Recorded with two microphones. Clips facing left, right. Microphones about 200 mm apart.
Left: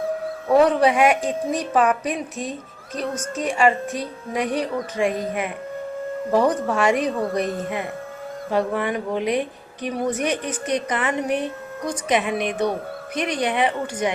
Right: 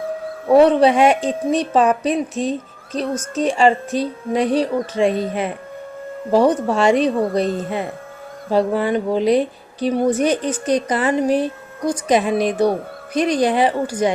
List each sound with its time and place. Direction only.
0.4 s a woman's voice: 25° right (ahead or behind)
6.3 s a woman's voice: 30° right (ahead or behind)